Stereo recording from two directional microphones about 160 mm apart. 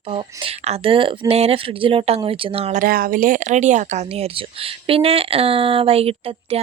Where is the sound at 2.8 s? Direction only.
65° right (ahead or behind).